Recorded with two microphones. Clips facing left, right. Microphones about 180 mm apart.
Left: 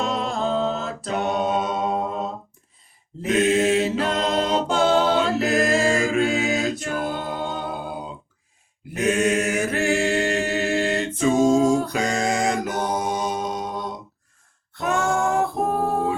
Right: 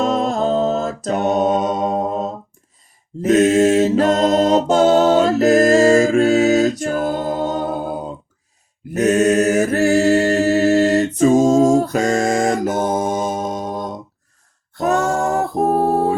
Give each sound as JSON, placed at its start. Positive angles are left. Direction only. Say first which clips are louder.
{"t": 0.0, "sound": "a capella", "louder": "right 7 dB", "side_deg": -45}
{"t": 3.2, "sound": "mantra", "louder": "right 7 dB", "side_deg": -40}
{"t": 14.7, "sound": "a sound", "louder": "right 5 dB", "side_deg": -40}